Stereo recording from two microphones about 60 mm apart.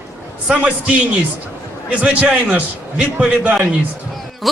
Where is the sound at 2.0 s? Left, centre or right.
Right.